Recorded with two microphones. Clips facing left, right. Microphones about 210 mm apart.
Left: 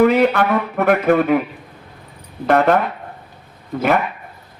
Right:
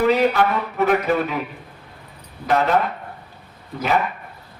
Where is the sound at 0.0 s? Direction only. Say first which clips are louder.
Left 3 dB; 55° left (ahead or behind).